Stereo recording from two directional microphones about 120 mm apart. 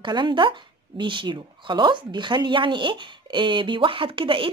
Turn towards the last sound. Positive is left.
turn(degrees=-45)  # may be behind; listen again after turning